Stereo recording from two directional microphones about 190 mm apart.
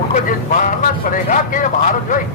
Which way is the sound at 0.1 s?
40° left (ahead or behind).